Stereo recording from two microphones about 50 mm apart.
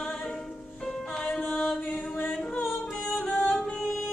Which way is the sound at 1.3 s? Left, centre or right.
Centre.